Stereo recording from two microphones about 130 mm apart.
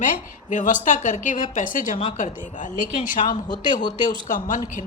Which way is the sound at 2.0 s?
65° left (ahead or behind).